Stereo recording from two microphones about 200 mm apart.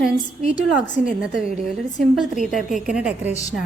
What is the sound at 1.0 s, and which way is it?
A woman's voice, 5° right (ahead or behind).